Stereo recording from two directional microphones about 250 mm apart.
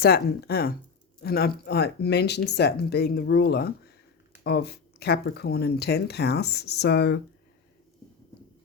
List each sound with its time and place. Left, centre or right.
0.0 s speech: left